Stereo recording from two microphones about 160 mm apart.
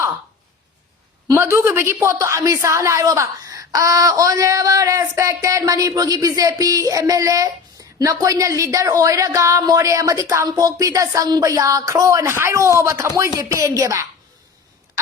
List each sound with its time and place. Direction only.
1.3 s a woman's voice: 15° right (ahead or behind)